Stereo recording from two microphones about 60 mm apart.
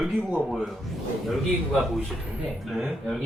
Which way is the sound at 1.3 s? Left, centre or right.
Centre.